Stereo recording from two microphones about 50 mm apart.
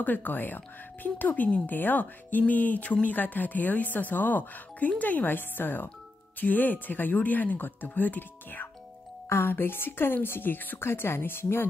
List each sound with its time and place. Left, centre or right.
0.0 s speech: left
9.3 s a woman's voice: left